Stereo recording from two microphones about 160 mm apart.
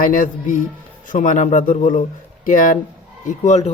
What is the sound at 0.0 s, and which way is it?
Speech, 55° left (ahead or behind).